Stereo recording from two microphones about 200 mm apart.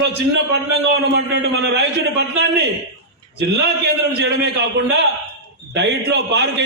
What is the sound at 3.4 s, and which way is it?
A man's voice, 55° right (ahead or behind).